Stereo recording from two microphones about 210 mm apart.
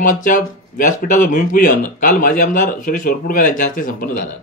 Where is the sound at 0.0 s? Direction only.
40° left (ahead or behind).